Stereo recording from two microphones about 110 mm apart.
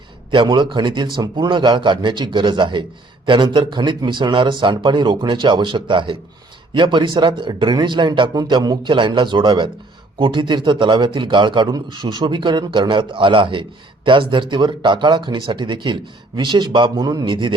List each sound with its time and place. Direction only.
0.3 s a man's voice: 45° right (ahead or behind)